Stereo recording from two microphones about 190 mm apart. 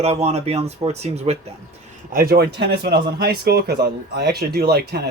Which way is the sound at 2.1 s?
50° right (ahead or behind).